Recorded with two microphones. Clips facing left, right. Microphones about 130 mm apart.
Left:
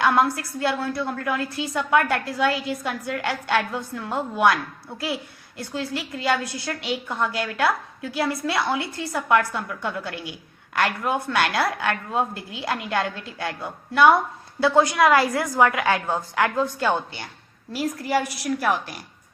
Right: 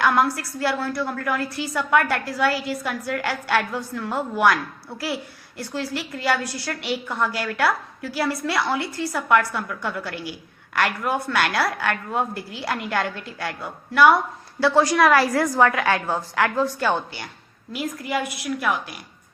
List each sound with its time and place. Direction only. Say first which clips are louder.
0.0 s a woman's voice: even; 25° left (ahead or behind)
17.7 s a woman's voice: left 2 dB; 35° left (ahead or behind)